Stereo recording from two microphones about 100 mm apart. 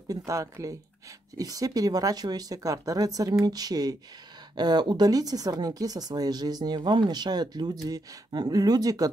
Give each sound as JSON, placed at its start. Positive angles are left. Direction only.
{"t": 0.1, "sound": "speech", "side_deg": -35}